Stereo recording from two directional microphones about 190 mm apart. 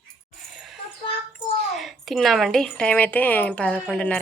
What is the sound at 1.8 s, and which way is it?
A woman's voice, centre (ahead or behind).